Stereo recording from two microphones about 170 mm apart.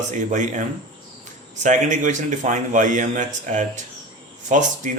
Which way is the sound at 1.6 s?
45° right (ahead or behind).